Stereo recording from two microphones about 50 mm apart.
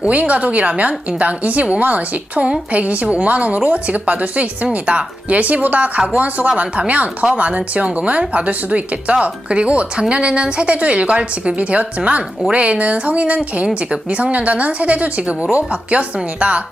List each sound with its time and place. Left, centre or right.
0.0 s a woman's voice: right